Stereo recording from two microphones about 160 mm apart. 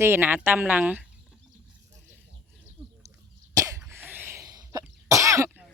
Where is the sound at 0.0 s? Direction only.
15° right (ahead or behind).